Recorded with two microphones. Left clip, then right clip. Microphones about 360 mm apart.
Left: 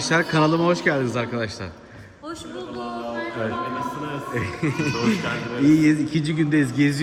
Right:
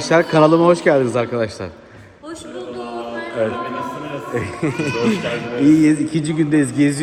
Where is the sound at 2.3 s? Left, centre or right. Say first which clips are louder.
Right 4 dB; left.